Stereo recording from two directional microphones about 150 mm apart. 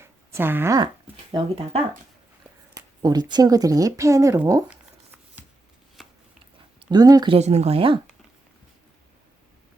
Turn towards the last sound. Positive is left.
turn(degrees=-35)  # may be behind; listen again after turning